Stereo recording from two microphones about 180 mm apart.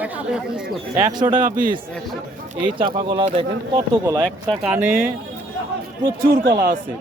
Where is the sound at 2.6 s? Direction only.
25° right (ahead or behind).